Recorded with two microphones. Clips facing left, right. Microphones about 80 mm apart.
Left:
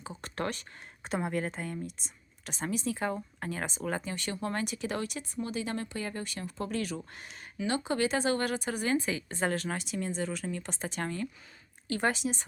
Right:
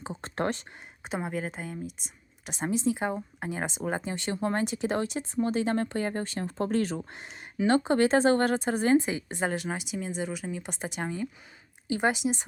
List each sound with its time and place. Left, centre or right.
0.0 s speech: right
1.0 s speech: centre
2.5 s speech: right
7.7 s speech: right; by 12.5 s centre